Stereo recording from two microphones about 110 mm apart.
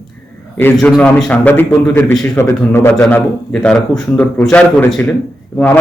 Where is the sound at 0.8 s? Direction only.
10° left (ahead or behind).